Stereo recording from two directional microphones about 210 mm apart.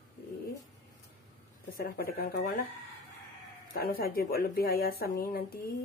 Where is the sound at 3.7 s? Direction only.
45° left (ahead or behind).